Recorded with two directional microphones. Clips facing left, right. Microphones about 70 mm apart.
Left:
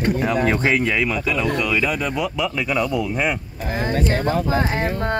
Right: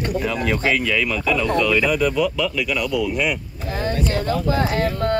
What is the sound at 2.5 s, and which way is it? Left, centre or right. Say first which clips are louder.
Speech: left 1 dB; left.